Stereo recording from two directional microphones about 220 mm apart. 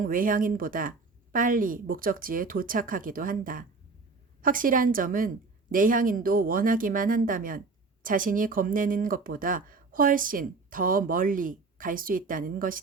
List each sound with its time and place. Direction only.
0.0 s speech: 40° right (ahead or behind)